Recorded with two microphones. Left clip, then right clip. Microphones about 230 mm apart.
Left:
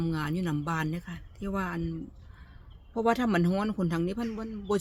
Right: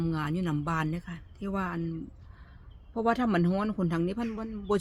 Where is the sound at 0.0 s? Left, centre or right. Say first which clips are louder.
Even; centre.